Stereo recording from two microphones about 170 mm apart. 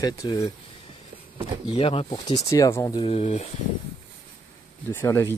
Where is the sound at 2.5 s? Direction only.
20° left (ahead or behind).